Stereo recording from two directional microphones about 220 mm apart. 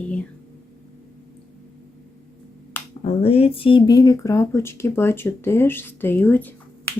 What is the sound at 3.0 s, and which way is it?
Speech, 25° left (ahead or behind).